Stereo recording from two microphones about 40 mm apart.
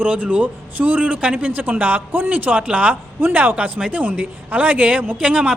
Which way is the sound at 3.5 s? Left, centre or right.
Right.